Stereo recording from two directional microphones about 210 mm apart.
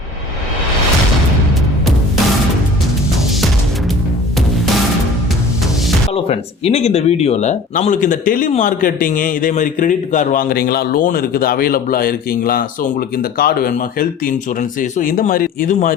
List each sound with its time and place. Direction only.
6.1 s speech: 30° left (ahead or behind)